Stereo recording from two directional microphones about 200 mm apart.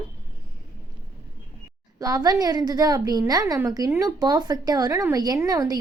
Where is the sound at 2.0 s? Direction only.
20° right (ahead or behind).